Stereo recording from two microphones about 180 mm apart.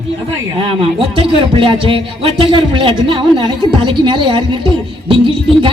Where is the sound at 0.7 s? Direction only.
30° right (ahead or behind).